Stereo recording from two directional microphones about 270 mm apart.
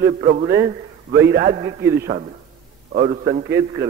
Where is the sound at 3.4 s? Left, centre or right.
Centre.